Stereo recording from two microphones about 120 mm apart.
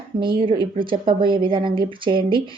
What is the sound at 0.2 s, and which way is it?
Speech, 45° right (ahead or behind).